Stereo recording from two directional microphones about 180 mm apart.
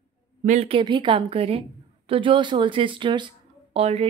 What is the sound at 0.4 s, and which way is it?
Speech, 35° right (ahead or behind).